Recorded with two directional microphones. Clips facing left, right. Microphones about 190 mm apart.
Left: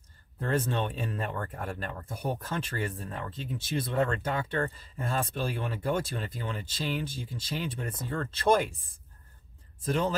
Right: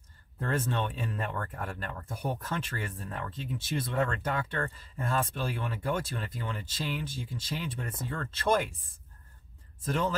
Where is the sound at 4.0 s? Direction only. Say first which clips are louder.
Left 2 dB; 30° left (ahead or behind).